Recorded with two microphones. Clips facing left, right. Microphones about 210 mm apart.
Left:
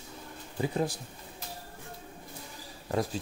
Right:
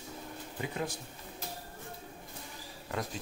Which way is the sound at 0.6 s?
35° left (ahead or behind).